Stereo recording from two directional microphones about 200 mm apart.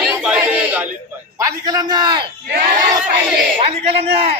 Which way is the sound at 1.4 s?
20° right (ahead or behind).